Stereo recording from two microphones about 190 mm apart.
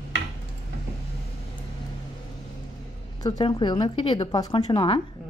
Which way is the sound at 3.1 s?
20° left (ahead or behind).